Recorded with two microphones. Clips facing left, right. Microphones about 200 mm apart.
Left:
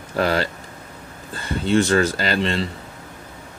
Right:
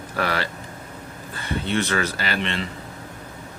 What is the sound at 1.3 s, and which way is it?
Speech, 30° left (ahead or behind).